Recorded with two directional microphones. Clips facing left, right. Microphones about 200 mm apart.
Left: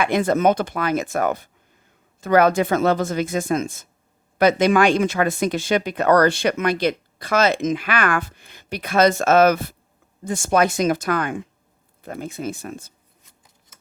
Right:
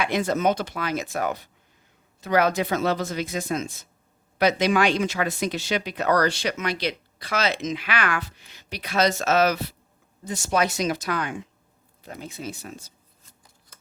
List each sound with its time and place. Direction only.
0.0 s speech: 55° left (ahead or behind)